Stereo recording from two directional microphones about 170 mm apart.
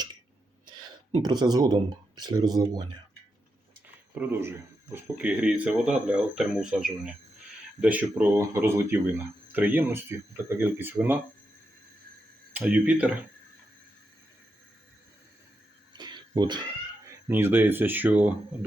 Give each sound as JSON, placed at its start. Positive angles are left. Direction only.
{"t": 1.2, "sound": "speech", "side_deg": -25}
{"t": 4.1, "sound": "speech", "side_deg": -10}
{"t": 12.5, "sound": "speech", "side_deg": -10}
{"t": 15.9, "sound": "a sound", "side_deg": -25}
{"t": 17.2, "sound": "speech", "side_deg": -10}